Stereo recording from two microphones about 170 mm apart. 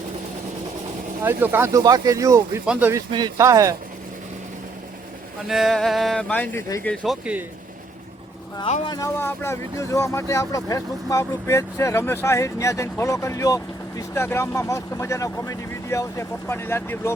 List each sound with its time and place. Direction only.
1.2 s speech: 10° right (ahead or behind)
3.1 s speech: 25° right (ahead or behind)
5.5 s speech: centre (ahead or behind); by 6.9 s 15° left (ahead or behind)
7.0 s speech: 5° right (ahead or behind)
8.8 s speech: 25° left (ahead or behind)
9.1 s speech: 15° left (ahead or behind)